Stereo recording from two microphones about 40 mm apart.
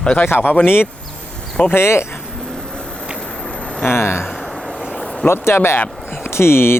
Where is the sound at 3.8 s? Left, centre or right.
Left.